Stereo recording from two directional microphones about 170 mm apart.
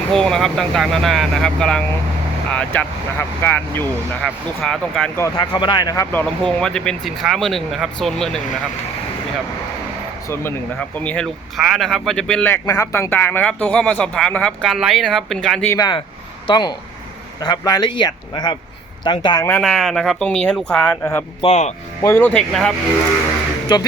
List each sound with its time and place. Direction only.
0.1 s speech: 5° left (ahead or behind)
5.2 s speech: 25° left (ahead or behind); by 8.4 s 5° left (ahead or behind)
10.2 s speech: 15° left (ahead or behind)
15.7 s speech: 25° left (ahead or behind)
19.6 s speech: centre (ahead or behind)
21.4 s speech: 40° left (ahead or behind)
22.0 s speech: 10° left (ahead or behind)
23.7 s speech: 25° left (ahead or behind)